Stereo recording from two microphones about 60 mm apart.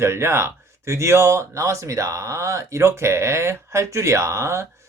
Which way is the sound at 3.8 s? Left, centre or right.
Right.